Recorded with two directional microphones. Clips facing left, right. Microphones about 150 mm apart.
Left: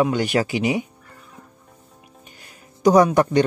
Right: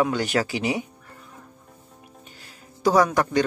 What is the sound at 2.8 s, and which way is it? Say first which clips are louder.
Speech: left 5 dB; 15° left (ahead or behind).